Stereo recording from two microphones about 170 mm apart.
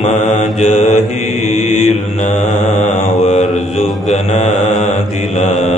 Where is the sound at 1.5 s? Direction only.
40° left (ahead or behind).